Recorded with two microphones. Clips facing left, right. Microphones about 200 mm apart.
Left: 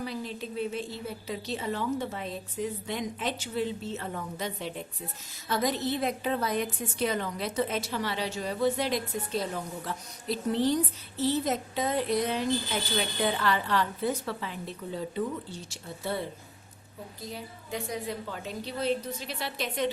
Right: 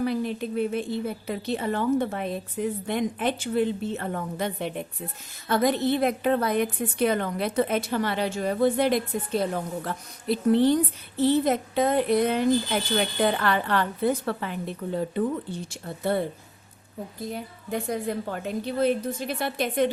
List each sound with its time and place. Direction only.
0.0 s a woman's voice: 60° right (ahead or behind)